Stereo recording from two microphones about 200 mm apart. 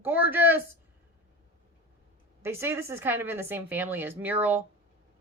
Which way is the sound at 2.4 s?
10° right (ahead or behind).